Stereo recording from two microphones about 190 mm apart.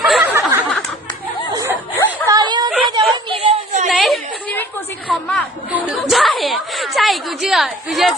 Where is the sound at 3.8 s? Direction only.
Centre (ahead or behind).